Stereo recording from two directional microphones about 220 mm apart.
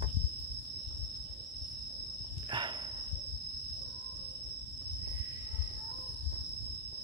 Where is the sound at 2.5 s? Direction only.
20° right (ahead or behind).